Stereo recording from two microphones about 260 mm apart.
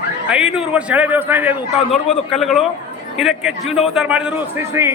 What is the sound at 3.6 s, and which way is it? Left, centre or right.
Speech, left.